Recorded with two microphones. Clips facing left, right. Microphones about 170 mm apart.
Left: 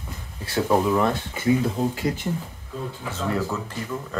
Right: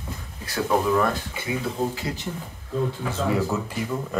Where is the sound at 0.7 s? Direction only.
20° left (ahead or behind).